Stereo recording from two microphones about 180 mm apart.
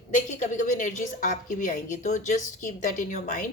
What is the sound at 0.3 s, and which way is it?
A woman's voice, 40° left (ahead or behind).